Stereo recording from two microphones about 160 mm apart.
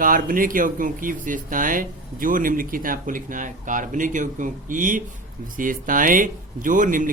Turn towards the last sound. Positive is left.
turn(degrees=-55)  # may be behind; listen again after turning